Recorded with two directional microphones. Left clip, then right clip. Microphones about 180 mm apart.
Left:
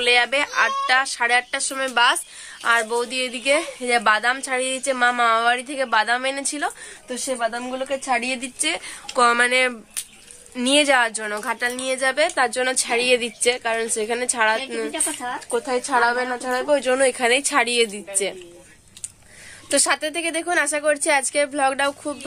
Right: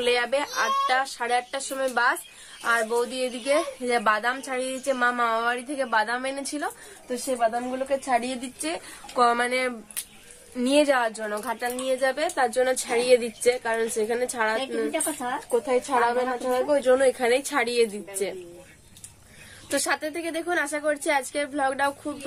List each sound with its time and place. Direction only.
0.0 s speech: 30° left (ahead or behind)
0.3 s a woman's voice: 15° left (ahead or behind)
14.9 s speech: 45° right (ahead or behind)
15.5 s a woman's voice: 15° left (ahead or behind)
19.7 s a woman's voice: 20° left (ahead or behind)